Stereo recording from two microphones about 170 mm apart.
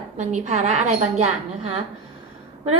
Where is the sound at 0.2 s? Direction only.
45° right (ahead or behind).